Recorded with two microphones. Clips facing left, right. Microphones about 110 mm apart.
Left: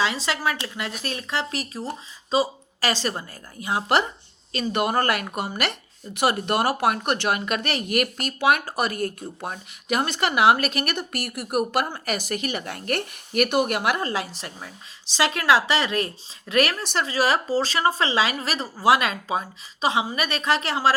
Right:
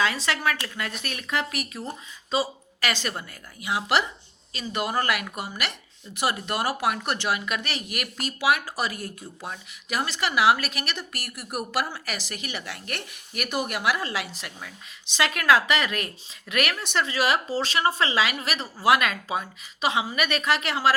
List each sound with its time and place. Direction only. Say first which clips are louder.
0.0 s a woman's voice: left 1 dB; 25° left (ahead or behind); by 4.1 s 45° left (ahead or behind)
4.5 s speech: left 4 dB; 55° left (ahead or behind)
14.0 s a woman's voice: left 4 dB; 40° left (ahead or behind)